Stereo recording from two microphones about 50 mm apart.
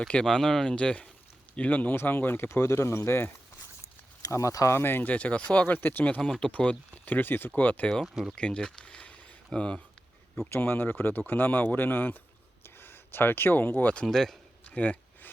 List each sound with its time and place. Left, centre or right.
0.3 s speech: centre; by 2.5 s left
2.7 s speech: left
4.3 s speech: left
4.8 s speech: left
5.0 s speech: left
5.8 s speech: left
6.4 s speech: left
7.0 s speech: left
7.5 s speech: left
8.0 s speech: centre
8.4 s speech: left
10.5 s speech: left
14.1 s speech: centre
14.7 s speech: left